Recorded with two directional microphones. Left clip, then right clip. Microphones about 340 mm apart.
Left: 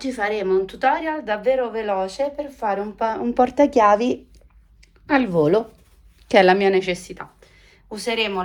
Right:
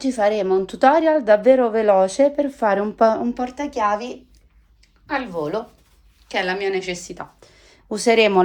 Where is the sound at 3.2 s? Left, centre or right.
Centre.